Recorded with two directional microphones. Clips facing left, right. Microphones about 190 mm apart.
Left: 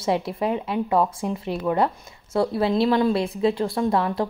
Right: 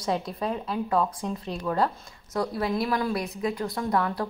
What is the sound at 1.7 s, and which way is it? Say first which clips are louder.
A woman's voice: left 3 dB; 20° left (ahead or behind).